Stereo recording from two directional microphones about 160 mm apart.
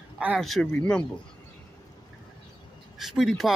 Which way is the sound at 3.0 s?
Centre (ahead or behind).